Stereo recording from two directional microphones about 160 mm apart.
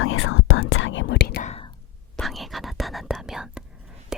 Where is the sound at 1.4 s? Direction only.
45° left (ahead or behind).